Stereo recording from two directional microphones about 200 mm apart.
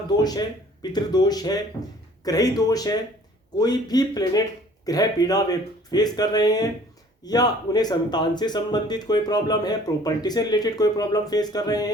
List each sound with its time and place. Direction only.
0.2 s speech: 20° left (ahead or behind)